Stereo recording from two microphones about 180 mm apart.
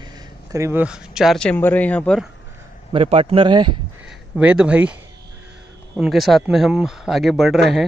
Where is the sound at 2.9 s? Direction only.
30° right (ahead or behind).